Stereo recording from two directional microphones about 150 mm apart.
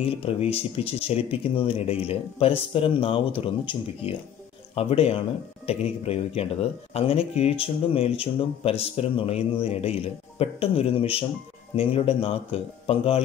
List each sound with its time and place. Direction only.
0.0 s speech: 40° left (ahead or behind)